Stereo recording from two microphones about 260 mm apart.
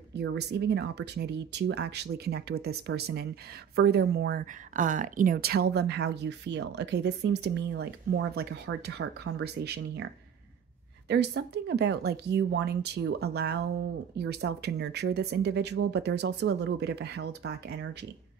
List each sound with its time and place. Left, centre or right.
0.1 s speech: right
11.1 s speech: right